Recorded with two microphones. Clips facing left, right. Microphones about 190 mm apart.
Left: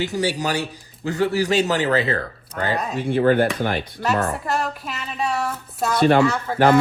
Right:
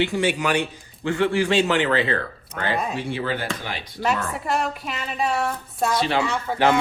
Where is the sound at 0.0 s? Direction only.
40° left (ahead or behind).